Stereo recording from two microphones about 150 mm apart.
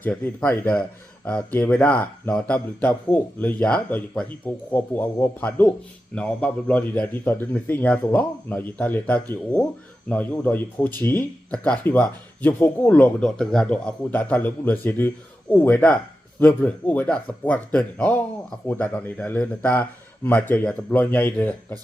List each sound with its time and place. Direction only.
0.0 s speech: 10° left (ahead or behind)